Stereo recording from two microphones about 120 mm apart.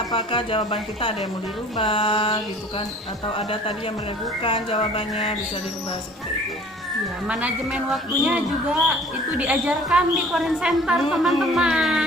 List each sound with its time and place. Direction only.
0.1 s speech: 45° left (ahead or behind)
4.4 s speech: 45° left (ahead or behind)
7.3 s a woman's voice: 10° right (ahead or behind)
9.4 s a woman's voice: 10° right (ahead or behind)
11.1 s music: 5° right (ahead or behind)